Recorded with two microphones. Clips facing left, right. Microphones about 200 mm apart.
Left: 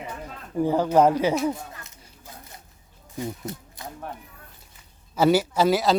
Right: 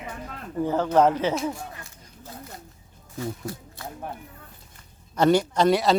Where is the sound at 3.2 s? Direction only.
20° left (ahead or behind).